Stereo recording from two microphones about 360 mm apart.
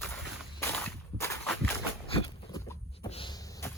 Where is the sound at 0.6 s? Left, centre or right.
Centre.